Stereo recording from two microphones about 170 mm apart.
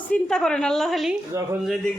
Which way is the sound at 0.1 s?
5° left (ahead or behind).